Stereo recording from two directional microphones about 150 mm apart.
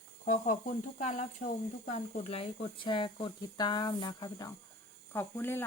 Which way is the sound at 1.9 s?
40° left (ahead or behind).